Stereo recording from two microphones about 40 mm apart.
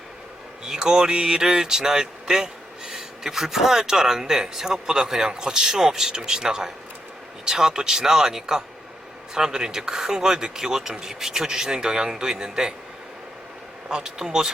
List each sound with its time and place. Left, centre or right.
0.6 s speech: centre
13.8 s speech: centre